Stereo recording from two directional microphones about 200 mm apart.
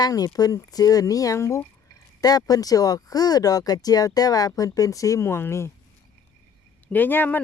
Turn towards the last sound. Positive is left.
turn(degrees=10)  # may be behind; listen again after turning